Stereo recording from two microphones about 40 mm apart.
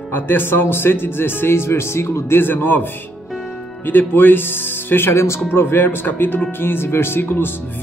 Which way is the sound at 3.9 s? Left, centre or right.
Left.